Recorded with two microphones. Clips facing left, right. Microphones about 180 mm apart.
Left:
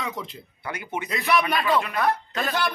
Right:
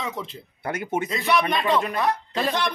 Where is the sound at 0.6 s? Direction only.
50° right (ahead or behind).